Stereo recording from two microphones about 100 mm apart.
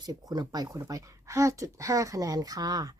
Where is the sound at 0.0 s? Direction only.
40° right (ahead or behind).